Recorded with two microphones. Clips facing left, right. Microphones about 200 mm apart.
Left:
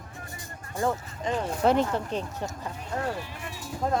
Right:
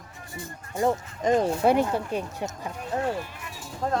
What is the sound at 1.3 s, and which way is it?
Speech, 40° right (ahead or behind).